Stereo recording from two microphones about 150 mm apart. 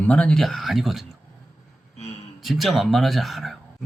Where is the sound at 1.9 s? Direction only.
45° left (ahead or behind).